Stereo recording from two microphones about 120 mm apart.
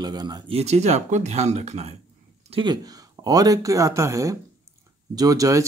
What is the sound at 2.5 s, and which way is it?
Speech, 35° right (ahead or behind).